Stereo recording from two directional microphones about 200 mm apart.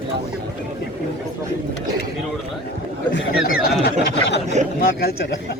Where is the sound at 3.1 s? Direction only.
55° left (ahead or behind).